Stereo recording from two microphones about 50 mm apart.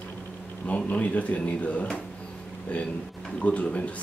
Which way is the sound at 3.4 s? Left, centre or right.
Left.